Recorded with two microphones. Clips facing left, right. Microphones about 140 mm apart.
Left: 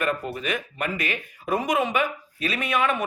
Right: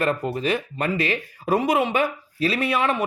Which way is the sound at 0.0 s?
35° right (ahead or behind).